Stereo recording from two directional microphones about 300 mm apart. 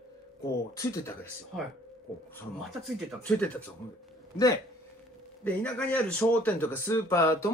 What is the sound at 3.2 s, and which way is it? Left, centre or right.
Speech, centre.